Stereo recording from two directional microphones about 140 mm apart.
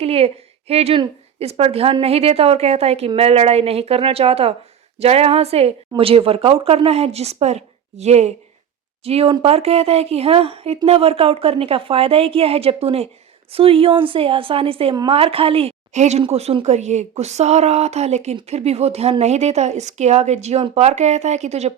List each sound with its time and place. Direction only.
0.0 s a woman's voice: 45° right (ahead or behind)